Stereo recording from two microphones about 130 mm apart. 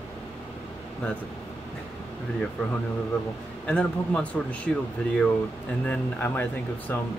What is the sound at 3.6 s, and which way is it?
Speech, 10° left (ahead or behind).